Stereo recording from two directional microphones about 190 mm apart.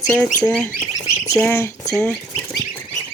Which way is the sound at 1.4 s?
10° left (ahead or behind).